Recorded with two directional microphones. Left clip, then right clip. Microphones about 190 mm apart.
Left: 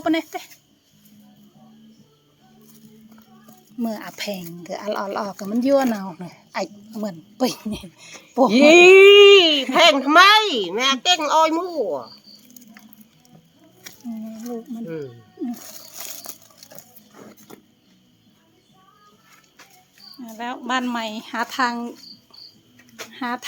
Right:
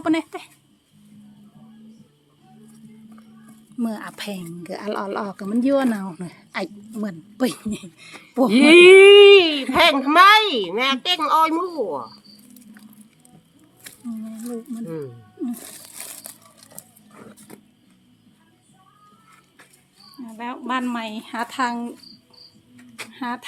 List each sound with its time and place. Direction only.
0.0 s a woman's voice: 5° right (ahead or behind)
3.8 s a woman's voice: 5° right (ahead or behind)
13.9 s a sound: 30° right (ahead or behind)
20.2 s speech: 15° left (ahead or behind)
23.1 s speech: 15° left (ahead or behind)